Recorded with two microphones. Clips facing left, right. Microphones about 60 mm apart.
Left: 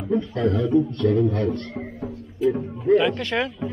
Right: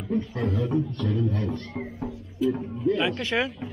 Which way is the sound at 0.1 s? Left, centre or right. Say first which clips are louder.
Left 5 dB; left.